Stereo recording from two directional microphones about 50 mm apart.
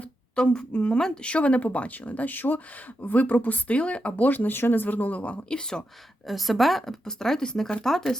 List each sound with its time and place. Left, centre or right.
0.3 s speech: centre
4.2 s speech: left
5.5 s speech: centre
6.2 s speech: centre